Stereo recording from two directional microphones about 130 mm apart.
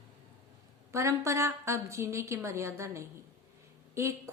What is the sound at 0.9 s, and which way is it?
A woman's voice, 25° right (ahead or behind).